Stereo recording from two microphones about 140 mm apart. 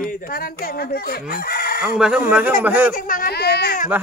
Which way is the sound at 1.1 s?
90° left.